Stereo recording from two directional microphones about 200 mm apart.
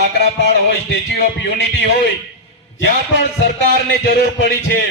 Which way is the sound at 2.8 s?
55° left (ahead or behind).